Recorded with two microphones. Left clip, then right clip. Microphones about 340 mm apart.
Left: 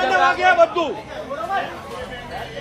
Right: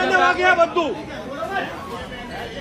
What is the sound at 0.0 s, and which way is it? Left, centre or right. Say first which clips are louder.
Speech: left 1 dB; centre.